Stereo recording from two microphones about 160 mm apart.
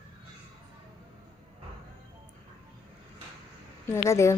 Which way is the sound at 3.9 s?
15° left (ahead or behind).